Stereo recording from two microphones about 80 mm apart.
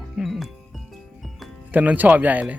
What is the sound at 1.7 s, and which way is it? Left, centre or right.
Speech, right.